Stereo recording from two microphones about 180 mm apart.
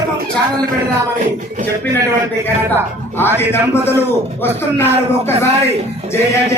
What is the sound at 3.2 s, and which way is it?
Speech, 10° left (ahead or behind).